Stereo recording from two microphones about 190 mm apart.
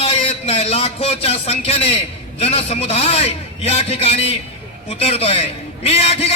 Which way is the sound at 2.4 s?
30° left (ahead or behind).